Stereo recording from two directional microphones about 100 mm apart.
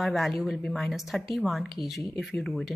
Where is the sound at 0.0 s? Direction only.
Centre (ahead or behind).